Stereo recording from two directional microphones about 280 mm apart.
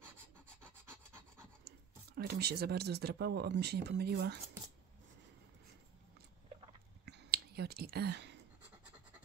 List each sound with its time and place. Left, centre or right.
0.6 s rub: centre
2.1 s speech: right
7.1 s clicking: right